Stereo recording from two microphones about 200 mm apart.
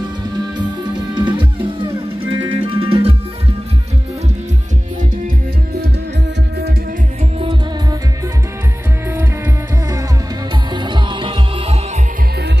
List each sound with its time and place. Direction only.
1.1 s music: 25° right (ahead or behind)
10.7 s music: 25° right (ahead or behind)